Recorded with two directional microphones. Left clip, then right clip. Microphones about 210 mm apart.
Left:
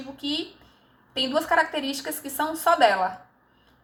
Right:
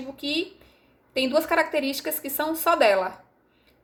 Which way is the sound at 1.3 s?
45° right (ahead or behind).